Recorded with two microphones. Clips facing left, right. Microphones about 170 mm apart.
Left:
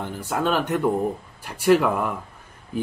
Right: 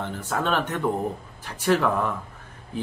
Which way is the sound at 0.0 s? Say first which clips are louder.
Left 2 dB; 10° left (ahead or behind).